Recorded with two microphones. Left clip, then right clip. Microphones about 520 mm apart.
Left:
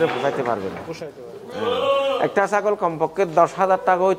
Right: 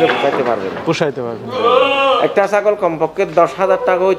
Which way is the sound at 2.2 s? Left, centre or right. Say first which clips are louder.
Right 6 dB; left.